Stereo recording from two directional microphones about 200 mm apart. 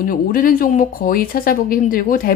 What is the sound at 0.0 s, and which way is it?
Speech, 45° left (ahead or behind).